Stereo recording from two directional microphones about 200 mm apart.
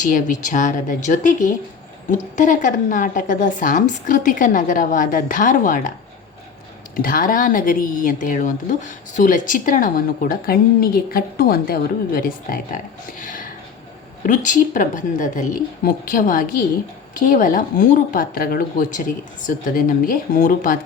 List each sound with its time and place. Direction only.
0.1 s a woman's voice: 40° left (ahead or behind)
6.9 s a woman's voice: 45° left (ahead or behind)